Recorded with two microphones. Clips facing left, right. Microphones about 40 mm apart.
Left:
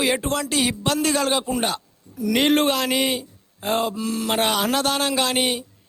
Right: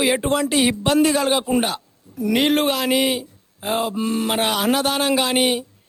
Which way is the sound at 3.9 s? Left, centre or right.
Right.